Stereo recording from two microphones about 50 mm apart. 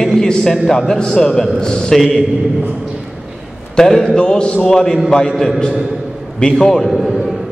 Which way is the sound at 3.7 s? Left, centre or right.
Centre.